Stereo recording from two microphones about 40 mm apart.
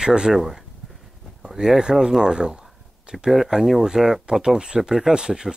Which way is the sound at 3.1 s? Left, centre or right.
Centre.